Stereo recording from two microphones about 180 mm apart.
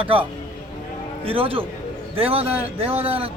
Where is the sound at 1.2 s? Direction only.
30° right (ahead or behind).